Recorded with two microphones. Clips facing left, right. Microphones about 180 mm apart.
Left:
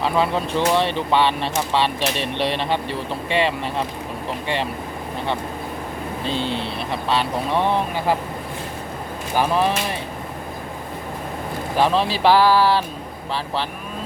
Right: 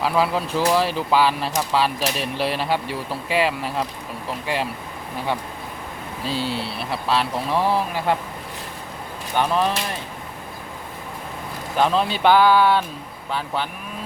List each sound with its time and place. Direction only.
0.0 s speech: 5° right (ahead or behind)
6.2 s speech: 5° right (ahead or behind)
9.3 s speech: 5° left (ahead or behind)
11.8 s speech: centre (ahead or behind)